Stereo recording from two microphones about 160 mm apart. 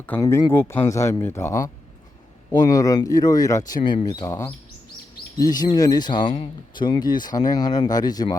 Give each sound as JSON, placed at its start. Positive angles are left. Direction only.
{"t": 0.2, "sound": "speech", "side_deg": 20}